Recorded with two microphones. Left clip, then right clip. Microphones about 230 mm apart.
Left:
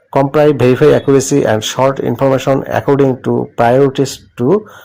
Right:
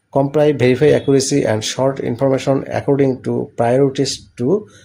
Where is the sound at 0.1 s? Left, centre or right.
Centre.